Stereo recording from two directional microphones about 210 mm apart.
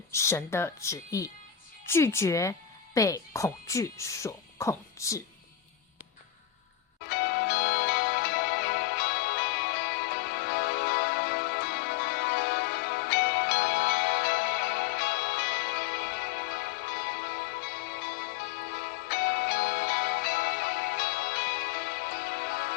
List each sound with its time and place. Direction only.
0.1 s speech: 15° left (ahead or behind)
7.1 s music: 50° left (ahead or behind)